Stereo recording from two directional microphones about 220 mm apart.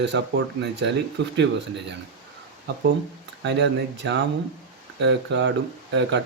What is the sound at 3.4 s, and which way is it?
Speech, 55° right (ahead or behind).